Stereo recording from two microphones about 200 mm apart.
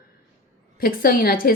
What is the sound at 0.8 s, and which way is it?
Speech, 50° left (ahead or behind).